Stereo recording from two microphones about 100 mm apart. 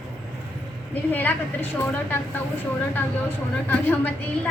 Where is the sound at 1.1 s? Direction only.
20° left (ahead or behind).